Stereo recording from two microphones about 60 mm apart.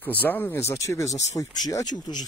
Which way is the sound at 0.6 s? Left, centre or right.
Left.